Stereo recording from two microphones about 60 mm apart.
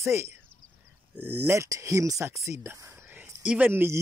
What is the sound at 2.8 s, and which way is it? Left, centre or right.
Whispering, right.